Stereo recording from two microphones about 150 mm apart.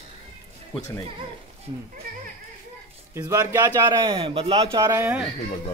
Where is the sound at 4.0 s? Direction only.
35° right (ahead or behind).